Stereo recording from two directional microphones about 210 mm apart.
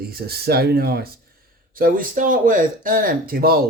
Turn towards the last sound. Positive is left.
turn(degrees=-45)  # may be behind; listen again after turning